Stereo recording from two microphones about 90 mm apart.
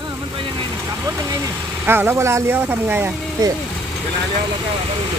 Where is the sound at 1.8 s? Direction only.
25° right (ahead or behind).